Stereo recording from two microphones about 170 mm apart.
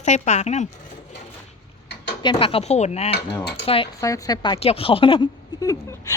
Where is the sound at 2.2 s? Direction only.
30° left (ahead or behind).